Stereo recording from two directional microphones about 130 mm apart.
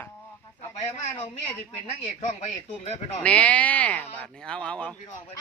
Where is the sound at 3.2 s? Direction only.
10° left (ahead or behind).